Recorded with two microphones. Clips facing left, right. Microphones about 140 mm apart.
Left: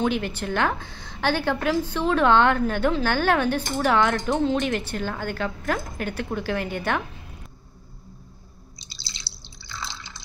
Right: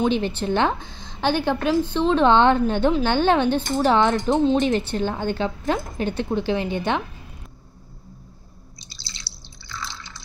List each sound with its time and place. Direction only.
0.0 s a woman's voice: 25° right (ahead or behind)
8.7 s drip: 20° left (ahead or behind)